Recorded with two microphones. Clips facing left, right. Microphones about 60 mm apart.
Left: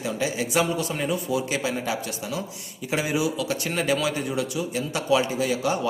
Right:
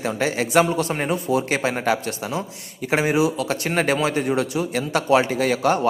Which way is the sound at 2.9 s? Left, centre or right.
Right.